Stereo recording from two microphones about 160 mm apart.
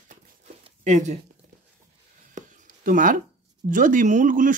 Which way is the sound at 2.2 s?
55° right (ahead or behind).